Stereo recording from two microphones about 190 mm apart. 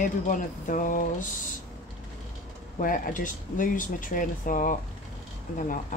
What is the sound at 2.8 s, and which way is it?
Speech, 45° left (ahead or behind).